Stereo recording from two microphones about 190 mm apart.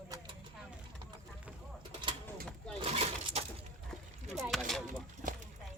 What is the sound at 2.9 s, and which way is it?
Pigeon, 35° right (ahead or behind).